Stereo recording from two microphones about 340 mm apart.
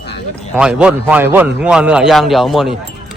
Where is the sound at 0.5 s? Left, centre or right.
Centre.